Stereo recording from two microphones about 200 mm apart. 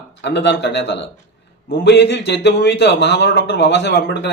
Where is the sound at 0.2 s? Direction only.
60° left (ahead or behind).